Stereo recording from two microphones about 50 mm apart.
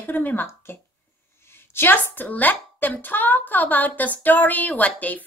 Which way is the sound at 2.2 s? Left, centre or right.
Left.